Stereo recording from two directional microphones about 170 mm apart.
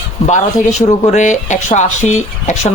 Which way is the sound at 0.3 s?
45° left (ahead or behind).